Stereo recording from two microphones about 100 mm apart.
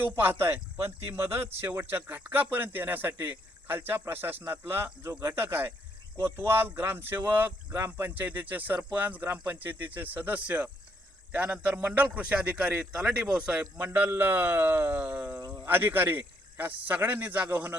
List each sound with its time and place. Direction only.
0.0 s a man's voice: 20° right (ahead or behind)
15.4 s a sound: 35° right (ahead or behind)
15.6 s a man's voice: 20° right (ahead or behind)